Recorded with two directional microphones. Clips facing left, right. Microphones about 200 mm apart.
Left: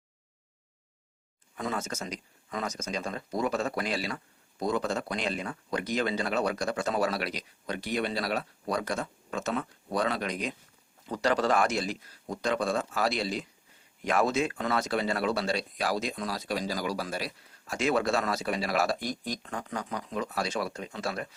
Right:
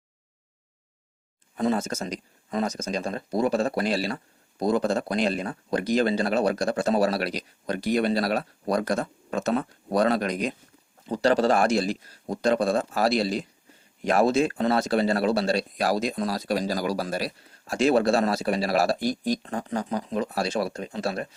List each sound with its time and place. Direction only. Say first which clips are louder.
1.5 s speech: right 8 dB; 35° right (ahead or behind)
11.1 s speech: right 5 dB; 30° right (ahead or behind)